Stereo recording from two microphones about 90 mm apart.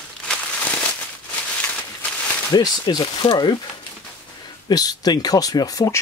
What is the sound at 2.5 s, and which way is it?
Speech, 50° left (ahead or behind).